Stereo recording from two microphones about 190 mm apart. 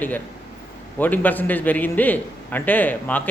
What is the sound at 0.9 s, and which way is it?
Speech, 10° left (ahead or behind).